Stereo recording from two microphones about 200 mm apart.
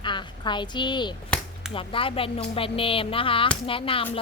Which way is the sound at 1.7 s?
25° left (ahead or behind).